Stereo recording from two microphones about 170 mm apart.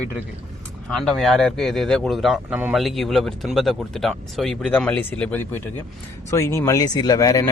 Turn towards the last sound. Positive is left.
turn(degrees=20)  # may be behind; listen again after turning